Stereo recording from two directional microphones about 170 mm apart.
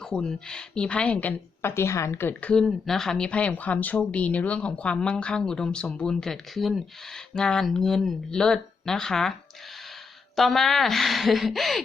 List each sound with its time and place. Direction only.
0.0 s a woman's voice: 5° left (ahead or behind)
10.3 s a woman's voice: centre (ahead or behind)